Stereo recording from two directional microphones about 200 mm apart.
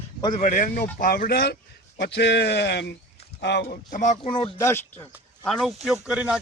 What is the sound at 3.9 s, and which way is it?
Speech, 35° left (ahead or behind).